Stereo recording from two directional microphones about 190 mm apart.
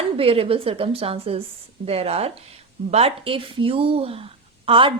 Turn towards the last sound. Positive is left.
turn(degrees=-30)  # may be behind; listen again after turning